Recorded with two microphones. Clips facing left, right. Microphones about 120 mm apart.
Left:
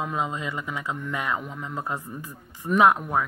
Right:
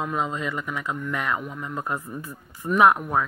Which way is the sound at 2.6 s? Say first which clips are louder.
Even; 10° right (ahead or behind).